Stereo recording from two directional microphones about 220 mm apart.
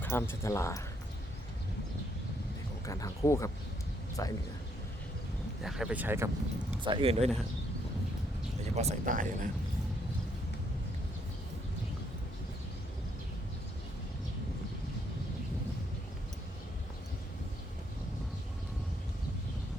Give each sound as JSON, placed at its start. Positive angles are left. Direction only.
{"t": 0.0, "sound": "speech", "side_deg": 10}
{"t": 2.8, "sound": "speech", "side_deg": 15}
{"t": 5.6, "sound": "speech", "side_deg": -5}
{"t": 6.8, "sound": "speech", "side_deg": -25}
{"t": 8.7, "sound": "speech", "side_deg": -30}